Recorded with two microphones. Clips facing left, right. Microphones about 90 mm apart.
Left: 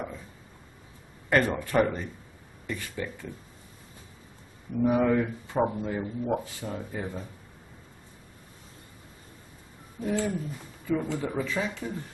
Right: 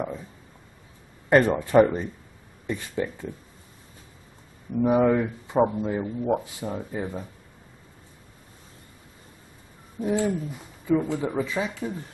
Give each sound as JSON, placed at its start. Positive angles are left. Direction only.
{"t": 1.3, "sound": "speech", "side_deg": -20}
{"t": 4.8, "sound": "speech", "side_deg": -20}
{"t": 10.0, "sound": "speech", "side_deg": -15}